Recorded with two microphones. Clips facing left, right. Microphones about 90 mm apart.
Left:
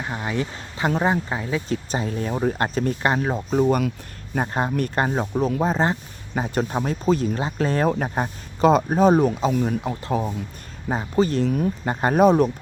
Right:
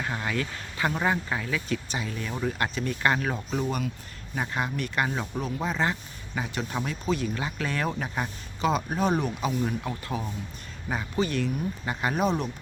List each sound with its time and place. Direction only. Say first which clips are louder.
0.0 s speech: left 3 dB; 20° left (ahead or behind); by 3.0 s 40° left (ahead or behind)
3.0 s speech: left 1 dB; 25° left (ahead or behind)
3.5 s speech: left 14 dB; 40° left (ahead or behind)
10.8 s speech: left 7 dB; 30° left (ahead or behind); by 12.5 s 45° left (ahead or behind)